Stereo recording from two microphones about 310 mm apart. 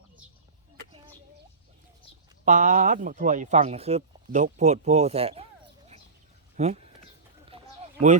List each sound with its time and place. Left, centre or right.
2.4 s speech: right
6.6 s speech: right